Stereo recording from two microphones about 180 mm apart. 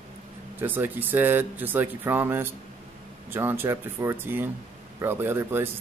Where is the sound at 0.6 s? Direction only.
10° right (ahead or behind).